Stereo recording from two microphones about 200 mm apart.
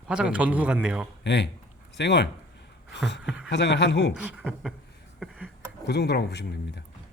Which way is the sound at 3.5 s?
60° left (ahead or behind).